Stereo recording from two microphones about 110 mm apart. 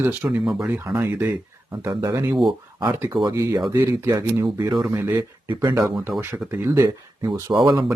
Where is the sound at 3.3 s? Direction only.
30° right (ahead or behind).